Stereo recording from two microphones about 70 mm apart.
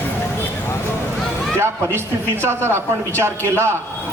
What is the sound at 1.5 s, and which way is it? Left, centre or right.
Speech, right.